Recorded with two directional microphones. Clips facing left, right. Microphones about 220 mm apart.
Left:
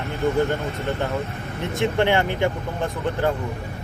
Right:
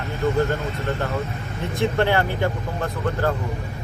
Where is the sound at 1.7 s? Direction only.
20° left (ahead or behind).